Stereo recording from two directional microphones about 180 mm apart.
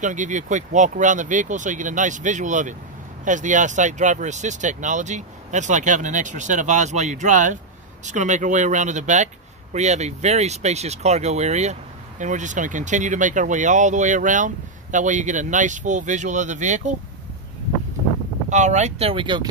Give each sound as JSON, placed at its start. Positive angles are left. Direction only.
{"t": 0.0, "sound": "speech", "side_deg": -45}
{"t": 18.5, "sound": "speech", "side_deg": -40}